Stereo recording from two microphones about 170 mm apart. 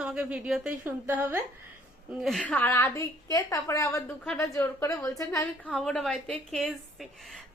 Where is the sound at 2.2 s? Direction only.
5° left (ahead or behind); by 5.5 s 20° left (ahead or behind).